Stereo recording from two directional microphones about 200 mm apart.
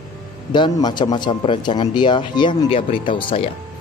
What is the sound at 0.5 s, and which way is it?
A man's voice, 20° left (ahead or behind).